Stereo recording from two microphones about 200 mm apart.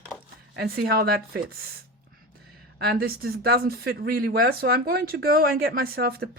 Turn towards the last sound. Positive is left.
turn(degrees=-50)  # may be behind; listen again after turning